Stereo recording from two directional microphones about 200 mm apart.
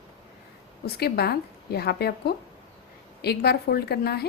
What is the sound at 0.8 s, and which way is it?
A woman's voice, 50° left (ahead or behind).